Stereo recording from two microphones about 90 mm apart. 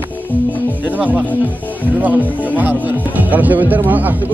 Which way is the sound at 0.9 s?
15° right (ahead or behind).